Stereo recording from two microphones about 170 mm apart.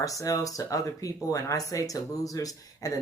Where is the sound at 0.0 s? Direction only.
20° left (ahead or behind).